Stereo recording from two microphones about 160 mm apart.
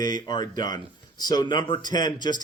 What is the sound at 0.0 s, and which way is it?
Speech, 25° left (ahead or behind).